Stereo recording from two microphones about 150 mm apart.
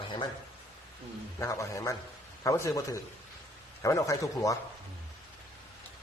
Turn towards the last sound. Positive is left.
turn(degrees=20)  # may be behind; listen again after turning